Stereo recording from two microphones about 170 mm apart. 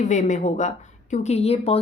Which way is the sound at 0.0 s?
45° left (ahead or behind).